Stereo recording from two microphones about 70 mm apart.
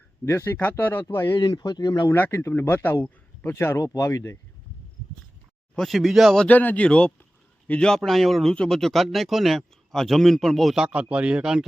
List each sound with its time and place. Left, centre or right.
0.3 s speech: left
1.4 s speech: left
2.3 s speech: left
5.7 s speech: centre
6.5 s speech: left; by 10.8 s centre
10.8 s a man's voice: centre